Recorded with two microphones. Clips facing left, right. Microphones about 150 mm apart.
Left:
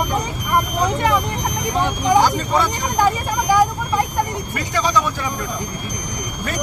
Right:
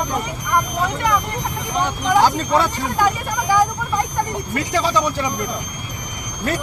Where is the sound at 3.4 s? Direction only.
10° left (ahead or behind).